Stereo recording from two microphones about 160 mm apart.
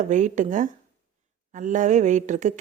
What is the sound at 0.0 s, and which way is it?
Speech, 50° right (ahead or behind).